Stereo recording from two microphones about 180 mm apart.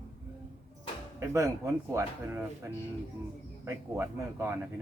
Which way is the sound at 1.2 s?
15° right (ahead or behind).